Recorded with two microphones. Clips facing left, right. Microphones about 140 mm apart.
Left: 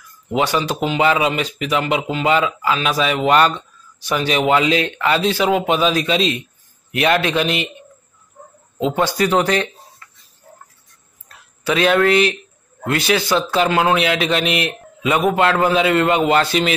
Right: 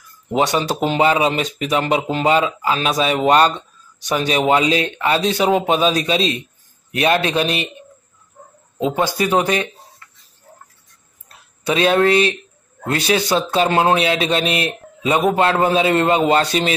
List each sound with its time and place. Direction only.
0.9 s speech: 30° right (ahead or behind)
8.9 s speech: 20° right (ahead or behind)
11.2 s speech: 25° right (ahead or behind)